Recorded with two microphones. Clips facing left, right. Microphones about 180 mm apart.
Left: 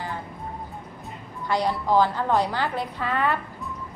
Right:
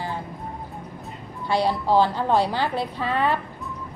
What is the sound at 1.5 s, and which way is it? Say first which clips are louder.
A woman's voice: right 2 dB; 30° right (ahead or behind).